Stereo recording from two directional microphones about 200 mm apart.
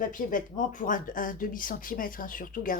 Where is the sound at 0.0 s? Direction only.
40° left (ahead or behind).